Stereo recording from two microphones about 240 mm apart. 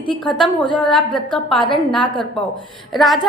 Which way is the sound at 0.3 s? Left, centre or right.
Centre.